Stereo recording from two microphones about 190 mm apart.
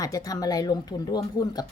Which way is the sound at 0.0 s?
20° left (ahead or behind).